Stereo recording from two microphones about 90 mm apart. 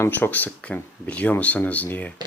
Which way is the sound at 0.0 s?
20° left (ahead or behind).